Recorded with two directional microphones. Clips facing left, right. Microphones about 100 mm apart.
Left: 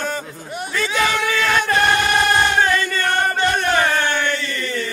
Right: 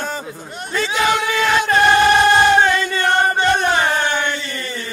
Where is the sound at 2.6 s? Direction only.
20° right (ahead or behind).